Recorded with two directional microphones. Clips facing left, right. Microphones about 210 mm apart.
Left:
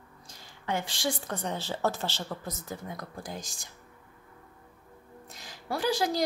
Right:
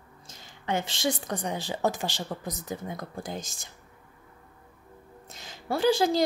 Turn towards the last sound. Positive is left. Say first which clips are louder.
# right 5 dB
turn(degrees=-25)  # may be behind; listen again after turning